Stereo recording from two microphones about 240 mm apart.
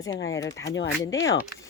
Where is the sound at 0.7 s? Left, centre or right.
Left.